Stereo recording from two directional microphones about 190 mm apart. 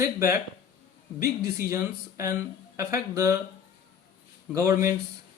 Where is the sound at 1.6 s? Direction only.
15° right (ahead or behind).